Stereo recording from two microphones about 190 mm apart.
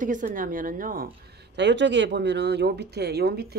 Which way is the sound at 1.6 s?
65° right (ahead or behind).